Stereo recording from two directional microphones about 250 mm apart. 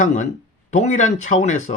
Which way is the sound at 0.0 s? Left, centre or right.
Left.